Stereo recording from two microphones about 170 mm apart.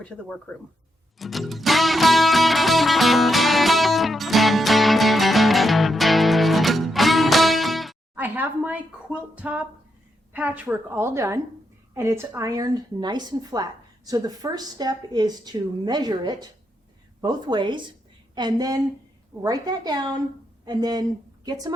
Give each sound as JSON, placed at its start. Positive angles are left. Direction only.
{"t": 0.5, "sound": "speech", "side_deg": 5}
{"t": 1.2, "sound": "music", "side_deg": 0}
{"t": 8.1, "sound": "a sound", "side_deg": -10}
{"t": 9.3, "sound": "a woman's voice", "side_deg": -10}